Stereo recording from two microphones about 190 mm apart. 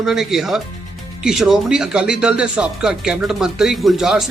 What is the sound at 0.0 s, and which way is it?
Speech, centre (ahead or behind).